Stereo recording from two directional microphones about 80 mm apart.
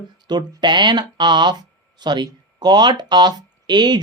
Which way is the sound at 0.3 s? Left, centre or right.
Right.